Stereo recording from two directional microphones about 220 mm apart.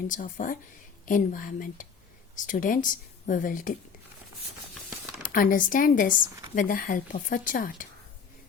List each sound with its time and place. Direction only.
0.1 s speech: 35° left (ahead or behind)
5.3 s speech: 40° left (ahead or behind)